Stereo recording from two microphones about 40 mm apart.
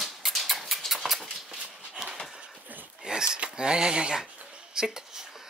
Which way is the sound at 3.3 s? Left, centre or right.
Right.